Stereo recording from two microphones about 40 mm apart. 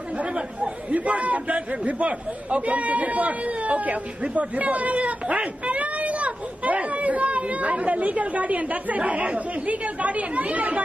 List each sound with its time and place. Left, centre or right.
0.2 s a man's voice: right